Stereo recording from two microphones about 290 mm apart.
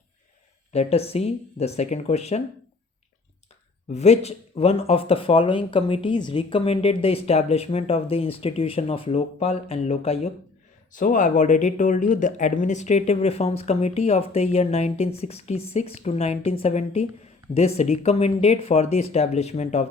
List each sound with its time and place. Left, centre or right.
0.7 s speech: left
3.9 s speech: left